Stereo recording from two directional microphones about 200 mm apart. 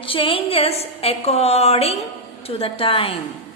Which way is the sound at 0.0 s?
25° left (ahead or behind).